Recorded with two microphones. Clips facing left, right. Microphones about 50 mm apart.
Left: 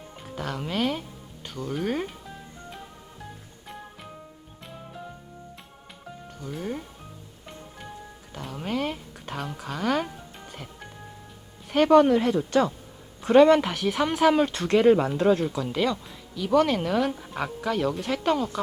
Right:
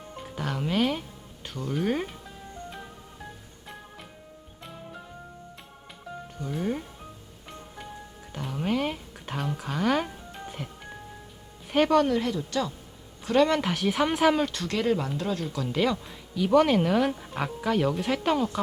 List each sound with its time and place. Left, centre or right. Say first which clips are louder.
0.2 s speech: right 1 dB; centre
6.4 s speech: right 3 dB; centre
8.3 s a sound: right 2 dB; centre
11.9 s speech: left 8 dB; centre
12.3 s speech: left 6 dB; left
13.2 s speech: left 6 dB; left
13.5 s speech: left 5 dB; centre
14.4 s speech: left 7 dB; left
15.5 s speech: left 1 dB; centre
15.8 s speech: right 1 dB; centre